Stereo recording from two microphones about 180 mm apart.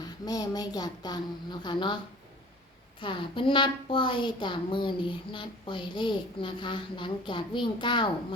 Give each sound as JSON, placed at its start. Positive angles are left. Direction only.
{"t": 0.0, "sound": "a woman's voice", "side_deg": 20}
{"t": 3.0, "sound": "a woman's voice", "side_deg": 30}